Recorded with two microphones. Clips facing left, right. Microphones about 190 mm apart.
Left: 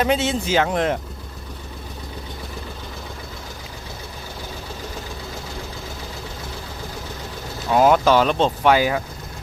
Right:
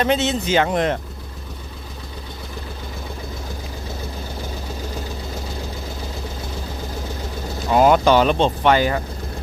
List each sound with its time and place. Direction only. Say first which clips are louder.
0.0 s speech: right 1 dB; 5° left (ahead or behind)
7.7 s speech: right 1 dB; centre (ahead or behind)